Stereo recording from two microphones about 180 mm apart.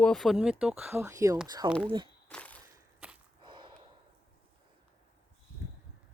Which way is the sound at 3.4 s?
25° right (ahead or behind).